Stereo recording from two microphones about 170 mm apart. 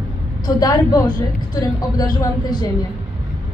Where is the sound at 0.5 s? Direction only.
20° left (ahead or behind).